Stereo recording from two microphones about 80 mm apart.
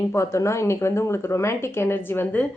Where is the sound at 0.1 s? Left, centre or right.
Left.